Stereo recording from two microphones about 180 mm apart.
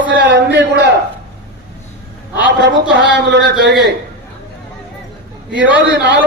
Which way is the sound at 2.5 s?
75° right (ahead or behind).